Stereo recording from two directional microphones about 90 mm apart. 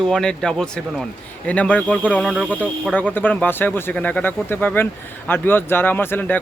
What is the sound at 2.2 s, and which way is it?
Speech, centre (ahead or behind).